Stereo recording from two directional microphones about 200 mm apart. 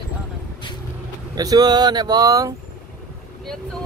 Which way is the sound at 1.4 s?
20° right (ahead or behind).